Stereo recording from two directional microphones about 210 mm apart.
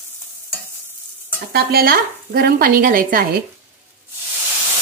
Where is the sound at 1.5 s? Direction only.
50° right (ahead or behind).